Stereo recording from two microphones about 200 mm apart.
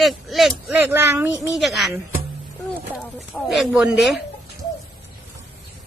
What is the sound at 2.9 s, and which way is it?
Speech, centre (ahead or behind).